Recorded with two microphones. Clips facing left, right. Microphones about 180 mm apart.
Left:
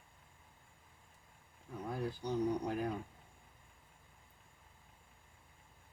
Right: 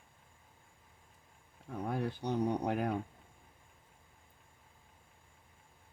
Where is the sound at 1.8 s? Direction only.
65° right (ahead or behind).